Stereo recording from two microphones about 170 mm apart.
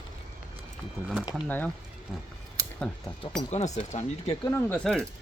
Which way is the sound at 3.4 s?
40° left (ahead or behind).